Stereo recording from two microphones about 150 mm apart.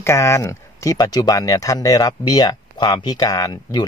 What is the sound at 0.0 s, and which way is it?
Speech, 20° left (ahead or behind).